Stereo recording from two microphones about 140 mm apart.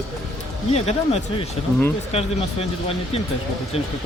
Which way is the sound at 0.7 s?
50° left (ahead or behind).